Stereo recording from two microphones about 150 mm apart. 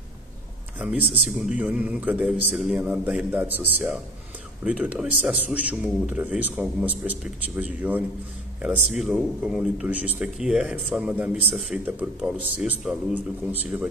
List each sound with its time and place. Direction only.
0.7 s speech: 5° right (ahead or behind)
4.6 s speech: 10° right (ahead or behind)